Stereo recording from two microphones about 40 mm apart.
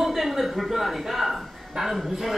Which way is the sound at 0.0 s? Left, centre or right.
Centre.